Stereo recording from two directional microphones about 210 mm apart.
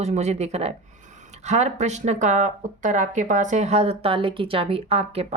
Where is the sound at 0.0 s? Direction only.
30° right (ahead or behind).